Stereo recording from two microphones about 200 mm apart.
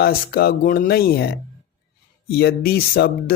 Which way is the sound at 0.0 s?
50° left (ahead or behind).